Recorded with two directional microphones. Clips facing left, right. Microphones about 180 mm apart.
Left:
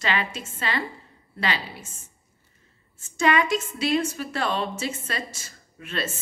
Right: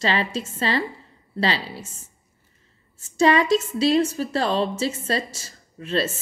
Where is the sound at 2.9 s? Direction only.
35° right (ahead or behind).